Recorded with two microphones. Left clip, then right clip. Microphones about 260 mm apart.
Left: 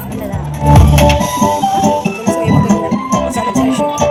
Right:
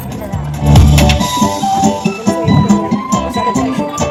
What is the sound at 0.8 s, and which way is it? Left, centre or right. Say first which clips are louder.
Music: left 2 dB; right.